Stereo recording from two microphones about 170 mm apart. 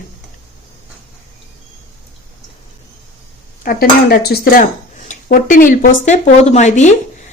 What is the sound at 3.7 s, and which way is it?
Cutlery, 65° left (ahead or behind).